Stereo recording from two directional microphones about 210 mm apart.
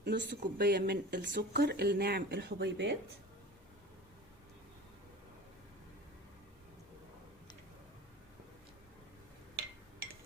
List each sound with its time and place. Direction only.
0.0 s speech: 55° right (ahead or behind)